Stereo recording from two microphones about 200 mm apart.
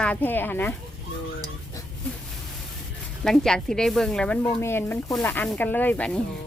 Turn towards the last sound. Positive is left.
turn(degrees=5)  # may be behind; listen again after turning